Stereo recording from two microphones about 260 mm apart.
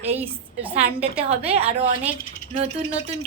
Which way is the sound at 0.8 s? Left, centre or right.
Right.